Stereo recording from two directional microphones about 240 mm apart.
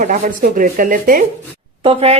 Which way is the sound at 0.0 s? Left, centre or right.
Right.